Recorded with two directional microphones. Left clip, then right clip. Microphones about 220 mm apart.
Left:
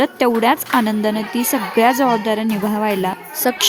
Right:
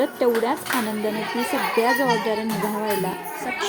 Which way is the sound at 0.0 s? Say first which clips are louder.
Left 5 dB; 50° left (ahead or behind).